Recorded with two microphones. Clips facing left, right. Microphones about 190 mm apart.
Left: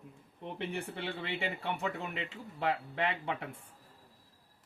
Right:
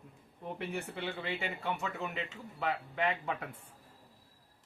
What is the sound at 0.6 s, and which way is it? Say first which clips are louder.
Speech: left 1 dB; 30° left (ahead or behind).